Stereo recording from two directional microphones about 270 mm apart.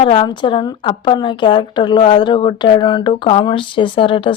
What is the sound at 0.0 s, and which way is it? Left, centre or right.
A woman's voice, centre.